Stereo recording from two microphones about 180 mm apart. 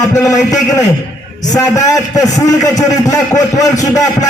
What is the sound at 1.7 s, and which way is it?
A man's voice, 20° left (ahead or behind).